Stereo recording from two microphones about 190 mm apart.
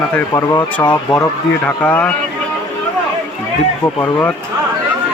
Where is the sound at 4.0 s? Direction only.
10° left (ahead or behind).